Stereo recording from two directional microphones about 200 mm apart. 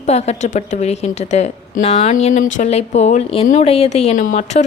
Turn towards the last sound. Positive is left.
turn(degrees=35)  # may be behind; listen again after turning